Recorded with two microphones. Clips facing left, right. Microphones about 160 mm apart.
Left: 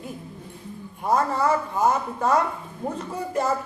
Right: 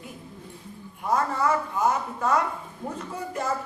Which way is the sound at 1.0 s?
35° left (ahead or behind).